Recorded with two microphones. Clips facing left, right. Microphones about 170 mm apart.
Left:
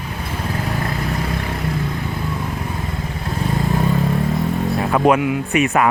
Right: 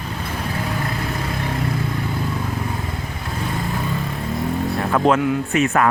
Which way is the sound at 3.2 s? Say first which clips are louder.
Left 5 dB; 20° left (ahead or behind).